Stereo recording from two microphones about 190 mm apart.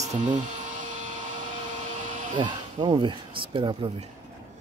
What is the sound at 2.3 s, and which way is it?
Speech, 25° right (ahead or behind).